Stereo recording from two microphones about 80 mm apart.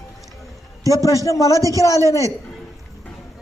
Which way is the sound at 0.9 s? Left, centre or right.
Left.